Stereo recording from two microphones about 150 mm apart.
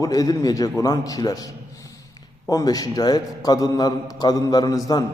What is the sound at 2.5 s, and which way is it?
A man's voice, 25° left (ahead or behind).